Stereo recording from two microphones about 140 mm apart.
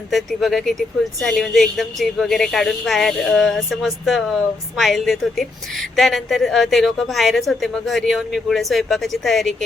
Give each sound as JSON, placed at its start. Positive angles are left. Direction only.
{"t": 0.1, "sound": "a woman's voice", "side_deg": 0}